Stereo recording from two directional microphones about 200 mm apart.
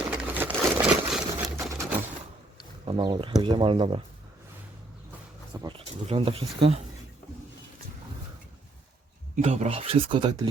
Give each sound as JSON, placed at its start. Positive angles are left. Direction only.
{"t": 0.1, "sound": "sewing machine", "side_deg": -5}
{"t": 2.8, "sound": "speech", "side_deg": -20}
{"t": 5.5, "sound": "speech", "side_deg": -25}
{"t": 9.3, "sound": "speech", "side_deg": -35}